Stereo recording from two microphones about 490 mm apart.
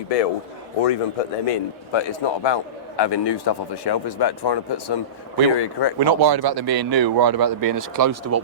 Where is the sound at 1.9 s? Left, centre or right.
Left.